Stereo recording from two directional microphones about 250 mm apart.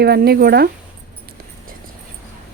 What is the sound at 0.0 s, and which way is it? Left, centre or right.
Speech, right.